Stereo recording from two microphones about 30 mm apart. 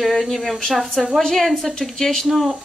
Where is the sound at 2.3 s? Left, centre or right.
Centre.